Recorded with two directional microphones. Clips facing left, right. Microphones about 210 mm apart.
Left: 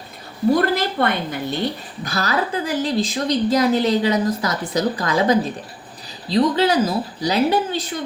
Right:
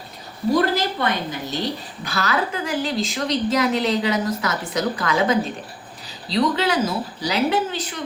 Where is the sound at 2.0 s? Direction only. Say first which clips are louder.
Left 1 dB; 40° left (ahead or behind).